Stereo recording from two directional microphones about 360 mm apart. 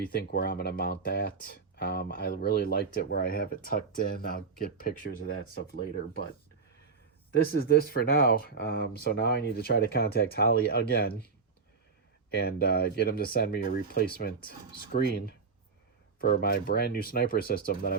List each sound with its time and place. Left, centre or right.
0.1 s speech: left
7.3 s speech: left
12.3 s speech: left